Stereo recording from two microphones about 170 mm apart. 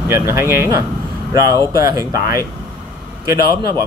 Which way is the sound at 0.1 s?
15° right (ahead or behind).